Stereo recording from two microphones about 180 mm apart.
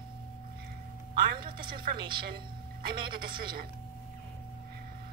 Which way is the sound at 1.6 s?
55° right (ahead or behind).